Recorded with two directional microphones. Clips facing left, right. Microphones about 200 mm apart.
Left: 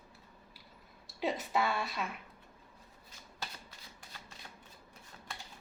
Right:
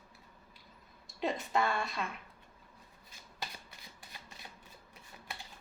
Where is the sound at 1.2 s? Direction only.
5° left (ahead or behind).